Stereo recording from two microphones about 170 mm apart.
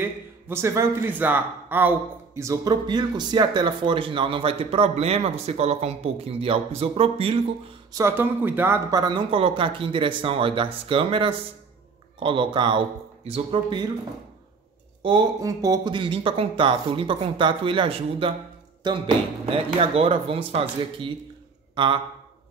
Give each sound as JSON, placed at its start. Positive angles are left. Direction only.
{"t": 0.0, "sound": "speech", "side_deg": -15}
{"t": 8.0, "sound": "speech", "side_deg": -10}
{"t": 15.0, "sound": "speech", "side_deg": -25}
{"t": 21.7, "sound": "speech", "side_deg": -30}